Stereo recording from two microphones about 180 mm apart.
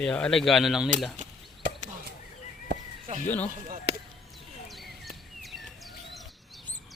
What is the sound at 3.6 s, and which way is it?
Basketball bounce, 40° right (ahead or behind).